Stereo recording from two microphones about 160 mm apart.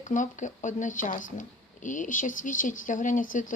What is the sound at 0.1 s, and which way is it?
Speech, 50° left (ahead or behind).